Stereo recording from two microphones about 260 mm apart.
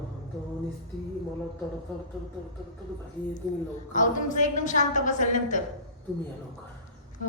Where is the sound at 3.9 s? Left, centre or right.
Left.